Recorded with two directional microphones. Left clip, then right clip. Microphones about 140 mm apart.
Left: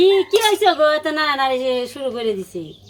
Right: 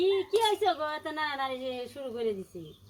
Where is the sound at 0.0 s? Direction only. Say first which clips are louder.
Left 12 dB; 55° left (ahead or behind).